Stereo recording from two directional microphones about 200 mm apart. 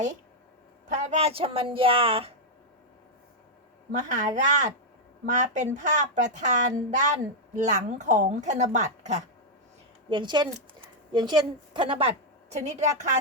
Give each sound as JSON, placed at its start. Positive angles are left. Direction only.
{"t": 0.9, "sound": "speech", "side_deg": -35}
{"t": 3.9, "sound": "speech", "side_deg": -35}
{"t": 10.1, "sound": "a woman's voice", "side_deg": -25}